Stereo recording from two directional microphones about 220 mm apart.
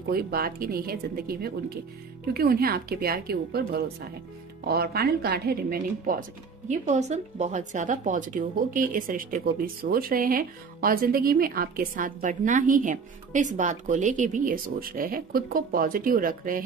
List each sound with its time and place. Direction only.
0.0 s a woman's voice: 45° right (ahead or behind)